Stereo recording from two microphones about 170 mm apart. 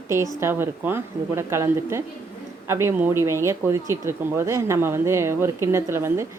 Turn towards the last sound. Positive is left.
turn(degrees=-15)  # may be behind; listen again after turning